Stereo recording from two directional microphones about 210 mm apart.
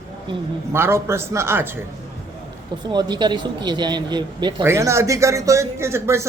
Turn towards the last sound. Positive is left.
turn(degrees=-10)  # may be behind; listen again after turning